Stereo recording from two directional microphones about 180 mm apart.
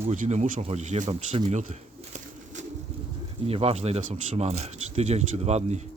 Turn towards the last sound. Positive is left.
turn(degrees=-40)  # may be behind; listen again after turning